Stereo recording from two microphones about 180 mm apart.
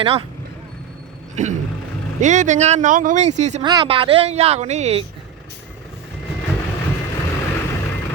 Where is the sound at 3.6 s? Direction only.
25° right (ahead or behind).